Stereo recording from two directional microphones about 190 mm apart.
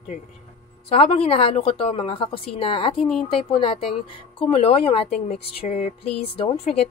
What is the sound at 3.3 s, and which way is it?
Speech, 30° left (ahead or behind).